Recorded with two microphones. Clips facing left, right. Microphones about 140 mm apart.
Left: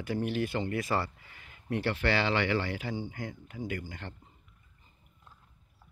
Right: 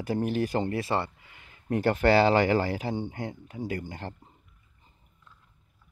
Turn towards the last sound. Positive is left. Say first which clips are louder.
# right 4 dB
turn(degrees=-35)  # may be behind; listen again after turning